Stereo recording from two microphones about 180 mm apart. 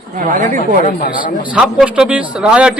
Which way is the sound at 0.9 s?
50° left (ahead or behind).